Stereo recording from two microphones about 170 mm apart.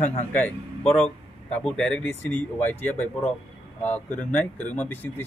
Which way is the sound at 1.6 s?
5° left (ahead or behind).